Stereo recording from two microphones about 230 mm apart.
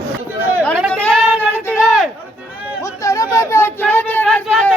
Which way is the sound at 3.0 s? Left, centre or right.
Centre.